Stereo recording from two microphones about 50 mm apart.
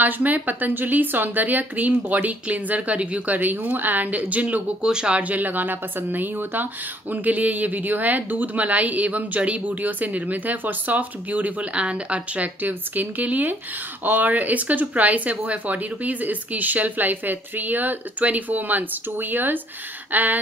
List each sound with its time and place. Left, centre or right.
0.0 s a woman's voice: right
3.3 s a woman's voice: right
4.8 s speech: centre
5.1 s a woman's voice: right
12.6 s a woman's voice: right
20.1 s a sound: right